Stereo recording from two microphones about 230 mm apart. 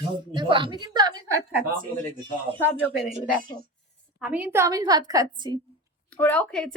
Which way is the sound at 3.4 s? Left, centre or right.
Right.